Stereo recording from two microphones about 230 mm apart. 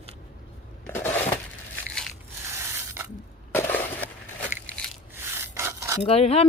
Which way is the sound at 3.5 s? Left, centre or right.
Centre.